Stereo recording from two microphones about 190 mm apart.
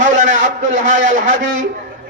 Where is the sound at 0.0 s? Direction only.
40° right (ahead or behind).